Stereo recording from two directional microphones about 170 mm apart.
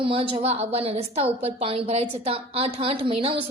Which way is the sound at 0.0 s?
30° right (ahead or behind).